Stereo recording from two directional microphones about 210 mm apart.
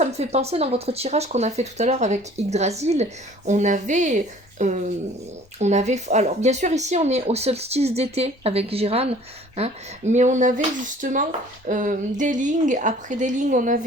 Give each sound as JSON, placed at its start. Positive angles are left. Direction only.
{"t": 0.0, "sound": "speech", "side_deg": -30}